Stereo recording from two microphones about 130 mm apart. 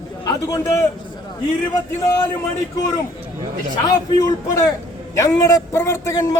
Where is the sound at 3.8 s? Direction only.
30° left (ahead or behind).